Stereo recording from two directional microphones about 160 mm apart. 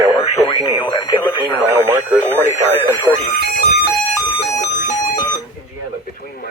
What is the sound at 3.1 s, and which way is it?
Speech, 20° left (ahead or behind).